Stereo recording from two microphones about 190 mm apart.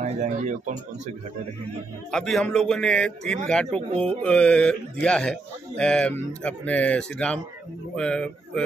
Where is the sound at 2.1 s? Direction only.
Centre (ahead or behind).